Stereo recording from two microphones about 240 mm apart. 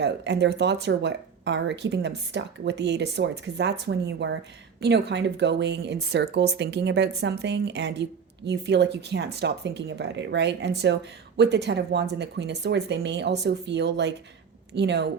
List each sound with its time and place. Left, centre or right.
0.0 s a woman's voice: right